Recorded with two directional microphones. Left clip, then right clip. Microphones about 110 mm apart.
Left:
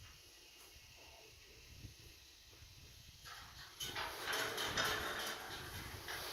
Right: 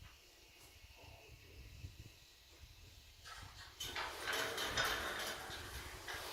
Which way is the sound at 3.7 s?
10° right (ahead or behind).